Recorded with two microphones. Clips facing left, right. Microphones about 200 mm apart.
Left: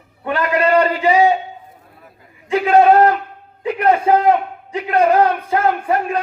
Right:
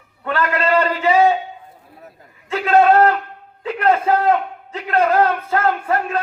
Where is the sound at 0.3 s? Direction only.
15° left (ahead or behind).